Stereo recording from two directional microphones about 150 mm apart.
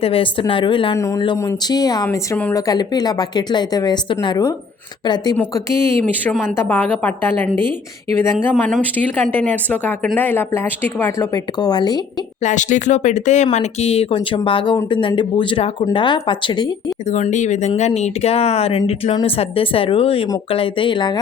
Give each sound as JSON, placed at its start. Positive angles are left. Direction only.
{"t": 0.0, "sound": "speech", "side_deg": 35}
{"t": 0.9, "sound": "a woman's voice", "side_deg": 20}
{"t": 2.0, "sound": "speech", "side_deg": 10}
{"t": 2.5, "sound": "a woman's voice", "side_deg": 25}
{"t": 5.5, "sound": "speech", "side_deg": 15}
{"t": 11.6, "sound": "a woman's voice", "side_deg": 25}
{"t": 12.4, "sound": "speech", "side_deg": 55}
{"t": 17.1, "sound": "speech", "side_deg": 50}